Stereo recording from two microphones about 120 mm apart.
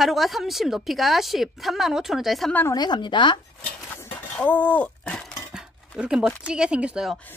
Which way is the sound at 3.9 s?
20° left (ahead or behind).